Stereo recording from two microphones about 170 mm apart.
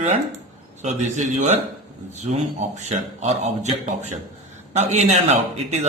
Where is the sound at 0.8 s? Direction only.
45° right (ahead or behind).